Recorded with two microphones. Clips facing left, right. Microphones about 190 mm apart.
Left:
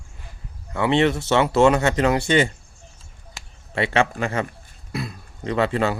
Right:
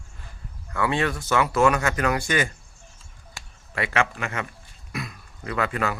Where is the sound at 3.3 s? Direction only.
25° left (ahead or behind).